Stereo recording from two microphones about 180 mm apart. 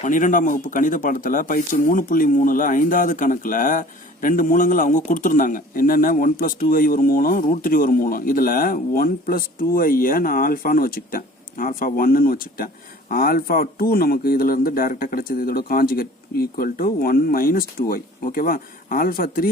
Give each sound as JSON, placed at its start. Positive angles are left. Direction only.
{"t": 0.0, "sound": "speech", "side_deg": 45}